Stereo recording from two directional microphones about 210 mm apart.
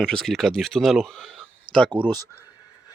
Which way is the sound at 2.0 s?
20° right (ahead or behind).